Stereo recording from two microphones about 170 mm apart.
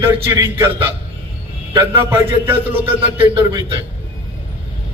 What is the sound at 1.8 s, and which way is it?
Speech, 15° right (ahead or behind).